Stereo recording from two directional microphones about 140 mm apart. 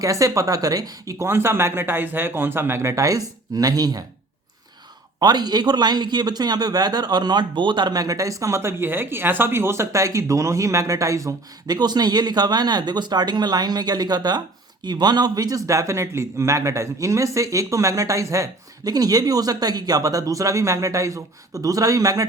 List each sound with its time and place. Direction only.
0.0 s a man's voice: 25° right (ahead or behind)
5.2 s a man's voice: 30° right (ahead or behind)